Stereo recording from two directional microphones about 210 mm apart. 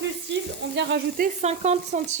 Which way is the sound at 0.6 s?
55° right (ahead or behind).